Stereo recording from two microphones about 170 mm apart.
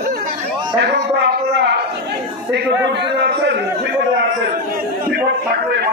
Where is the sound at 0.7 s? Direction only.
90° right.